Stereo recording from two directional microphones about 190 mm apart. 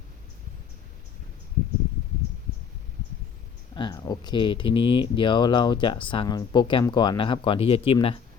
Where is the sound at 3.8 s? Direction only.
20° left (ahead or behind).